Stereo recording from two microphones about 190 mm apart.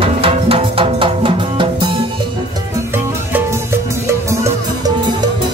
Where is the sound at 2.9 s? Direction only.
10° right (ahead or behind).